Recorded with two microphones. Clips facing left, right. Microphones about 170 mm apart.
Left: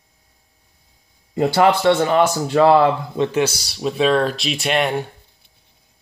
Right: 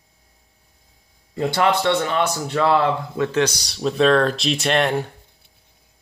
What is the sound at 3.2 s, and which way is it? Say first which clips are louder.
Speech: right 1 dB; 15° left (ahead or behind).